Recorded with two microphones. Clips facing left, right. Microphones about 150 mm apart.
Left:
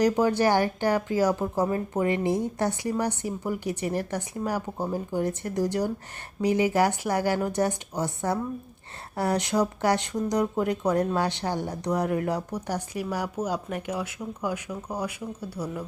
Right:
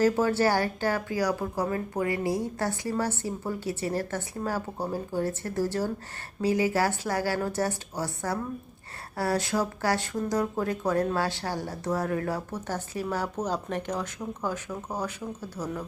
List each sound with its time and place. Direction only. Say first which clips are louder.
0.0 s speech: left 1 dB; 15° left (ahead or behind)